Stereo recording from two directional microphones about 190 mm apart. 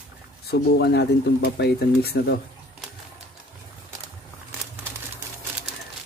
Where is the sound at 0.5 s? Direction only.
60° left (ahead or behind).